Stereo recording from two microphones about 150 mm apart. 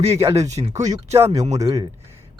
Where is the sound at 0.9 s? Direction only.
20° right (ahead or behind).